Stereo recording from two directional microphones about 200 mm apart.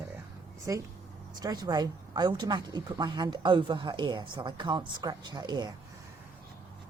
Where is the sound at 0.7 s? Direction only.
15° right (ahead or behind).